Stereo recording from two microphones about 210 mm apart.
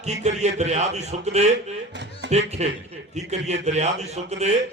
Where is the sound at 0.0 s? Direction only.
30° right (ahead or behind).